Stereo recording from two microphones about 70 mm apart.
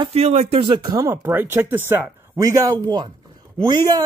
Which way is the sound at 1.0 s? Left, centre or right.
Right.